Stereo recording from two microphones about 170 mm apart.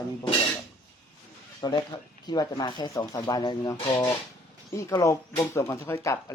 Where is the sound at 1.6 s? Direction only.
25° left (ahead or behind).